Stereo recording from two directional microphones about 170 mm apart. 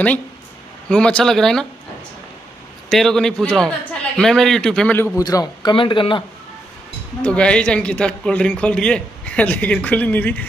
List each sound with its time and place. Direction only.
0.8 s a man's voice: 5° left (ahead or behind)
2.9 s a man's voice: 5° left (ahead or behind)
5.2 s a man's voice: 25° left (ahead or behind)
7.2 s a man's voice: 5° left (ahead or behind)